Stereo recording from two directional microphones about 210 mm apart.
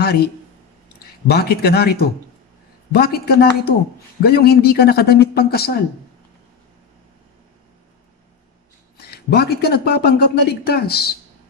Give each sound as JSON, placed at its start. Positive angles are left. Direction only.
{"t": 0.0, "sound": "speech", "side_deg": 45}
{"t": 9.1, "sound": "speech", "side_deg": 50}